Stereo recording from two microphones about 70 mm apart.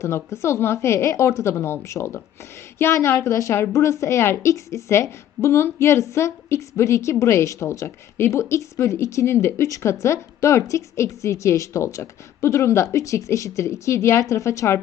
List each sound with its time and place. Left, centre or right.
0.0 s a woman's voice: left